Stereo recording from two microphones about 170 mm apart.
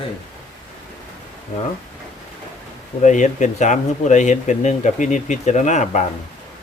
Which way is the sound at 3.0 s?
45° left (ahead or behind).